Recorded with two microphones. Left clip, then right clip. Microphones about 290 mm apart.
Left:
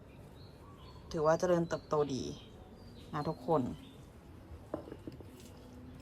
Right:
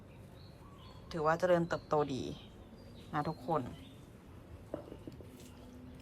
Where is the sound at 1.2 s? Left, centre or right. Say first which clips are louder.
Even; centre.